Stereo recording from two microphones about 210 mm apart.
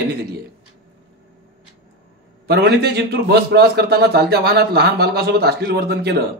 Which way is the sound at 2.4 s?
50° right (ahead or behind).